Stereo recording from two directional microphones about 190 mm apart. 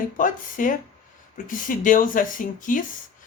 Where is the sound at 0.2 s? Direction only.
45° left (ahead or behind).